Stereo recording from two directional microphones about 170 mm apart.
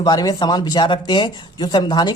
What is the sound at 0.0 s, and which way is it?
Speech, 25° left (ahead or behind).